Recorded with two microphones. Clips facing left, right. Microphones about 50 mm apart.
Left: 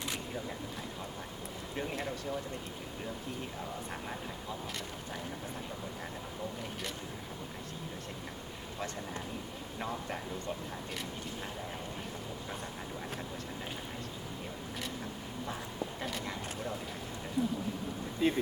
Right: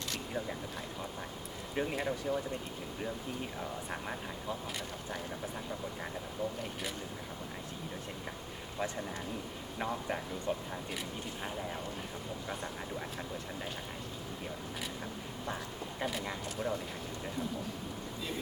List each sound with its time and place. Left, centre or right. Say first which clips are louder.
1.7 s speech: right 4 dB; centre
9.7 s speech: right 3 dB; centre
16.0 s speech: right 1 dB; centre
17.4 s speech: left 7 dB; centre
18.2 s speech: left 12 dB; left